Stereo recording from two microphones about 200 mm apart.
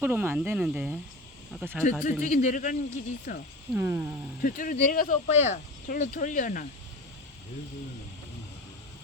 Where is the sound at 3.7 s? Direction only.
10° right (ahead or behind).